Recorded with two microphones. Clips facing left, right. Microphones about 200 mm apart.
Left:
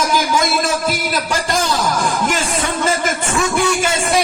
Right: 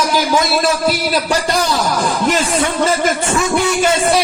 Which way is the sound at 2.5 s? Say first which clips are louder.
Right 4 dB; 50° left (ahead or behind).